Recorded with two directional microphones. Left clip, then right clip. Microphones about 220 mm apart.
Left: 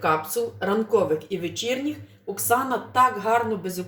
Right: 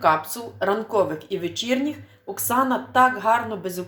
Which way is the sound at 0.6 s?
25° right (ahead or behind).